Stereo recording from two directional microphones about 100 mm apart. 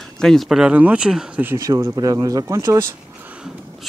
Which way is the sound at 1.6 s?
35° right (ahead or behind).